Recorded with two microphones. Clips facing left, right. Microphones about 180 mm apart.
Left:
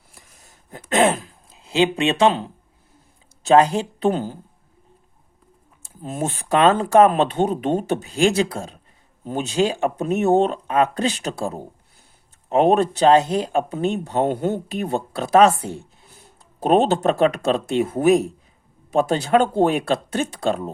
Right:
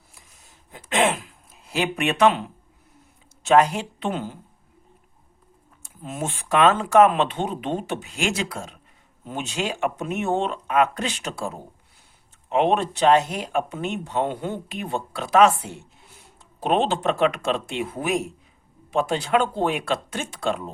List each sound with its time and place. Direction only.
0.4 s a sound: 40° left (ahead or behind)
3.4 s speech: 30° left (ahead or behind)
5.8 s speech: 35° left (ahead or behind)